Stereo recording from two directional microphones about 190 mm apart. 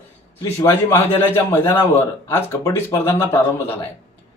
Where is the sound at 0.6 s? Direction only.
15° left (ahead or behind).